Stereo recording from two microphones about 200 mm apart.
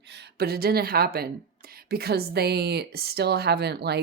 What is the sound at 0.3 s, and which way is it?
A woman's voice, 50° right (ahead or behind).